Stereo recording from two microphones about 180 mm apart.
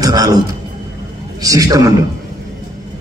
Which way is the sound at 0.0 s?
20° right (ahead or behind).